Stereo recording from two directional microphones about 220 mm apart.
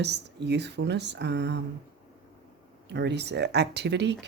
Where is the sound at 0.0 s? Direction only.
50° right (ahead or behind).